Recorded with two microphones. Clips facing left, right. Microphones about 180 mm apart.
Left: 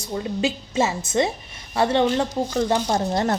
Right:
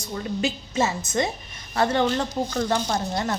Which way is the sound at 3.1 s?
40° left (ahead or behind).